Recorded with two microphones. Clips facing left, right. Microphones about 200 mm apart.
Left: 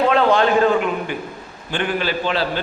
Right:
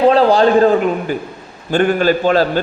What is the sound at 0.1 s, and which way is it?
A man's voice, 35° right (ahead or behind).